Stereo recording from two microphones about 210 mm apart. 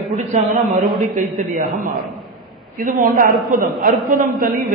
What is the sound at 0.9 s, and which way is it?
Speech, centre (ahead or behind).